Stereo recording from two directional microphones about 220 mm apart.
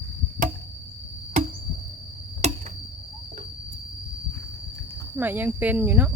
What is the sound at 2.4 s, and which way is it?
Tick-tock, 30° right (ahead or behind).